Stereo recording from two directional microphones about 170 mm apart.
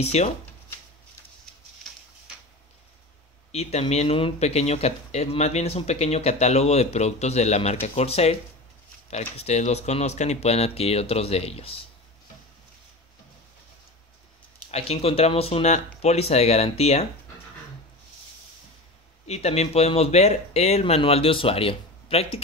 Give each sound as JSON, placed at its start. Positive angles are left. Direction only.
{"t": 0.0, "sound": "speech", "side_deg": 40}
{"t": 3.5, "sound": "speech", "side_deg": 40}
{"t": 14.7, "sound": "speech", "side_deg": 35}
{"t": 19.2, "sound": "speech", "side_deg": 40}